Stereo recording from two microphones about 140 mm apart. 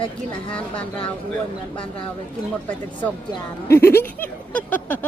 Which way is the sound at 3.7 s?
15° left (ahead or behind).